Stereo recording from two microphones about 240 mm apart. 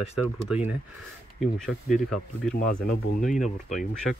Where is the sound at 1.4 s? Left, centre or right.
Centre.